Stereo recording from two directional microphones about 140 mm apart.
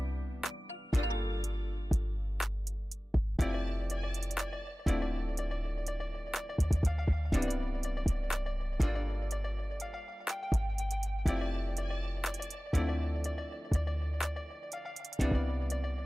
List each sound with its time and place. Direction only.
0.4 s music: centre (ahead or behind)